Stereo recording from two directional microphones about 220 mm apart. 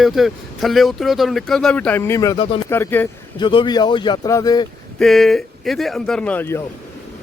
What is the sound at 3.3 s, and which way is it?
A man's voice, 20° left (ahead or behind).